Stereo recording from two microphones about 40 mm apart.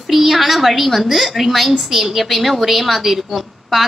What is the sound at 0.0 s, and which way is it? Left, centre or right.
A woman's voice, centre.